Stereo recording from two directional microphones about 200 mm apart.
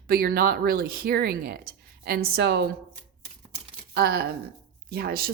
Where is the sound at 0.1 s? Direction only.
50° right (ahead or behind).